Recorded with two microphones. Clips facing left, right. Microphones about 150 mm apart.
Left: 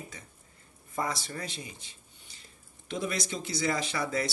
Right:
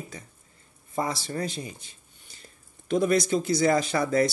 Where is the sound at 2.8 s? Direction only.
45° right (ahead or behind).